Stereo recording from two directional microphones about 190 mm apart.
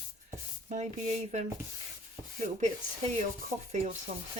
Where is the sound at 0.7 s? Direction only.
40° right (ahead or behind).